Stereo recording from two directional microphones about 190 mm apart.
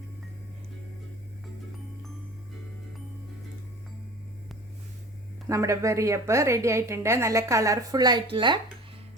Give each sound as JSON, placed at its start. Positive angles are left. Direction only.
{"t": 5.5, "sound": "a woman's voice", "side_deg": -15}